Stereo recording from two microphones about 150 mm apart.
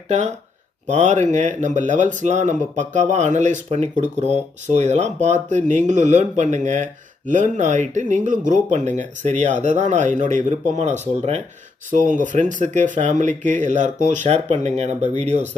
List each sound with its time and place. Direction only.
0.9 s speech: 50° right (ahead or behind)
11.9 s speech: 60° right (ahead or behind)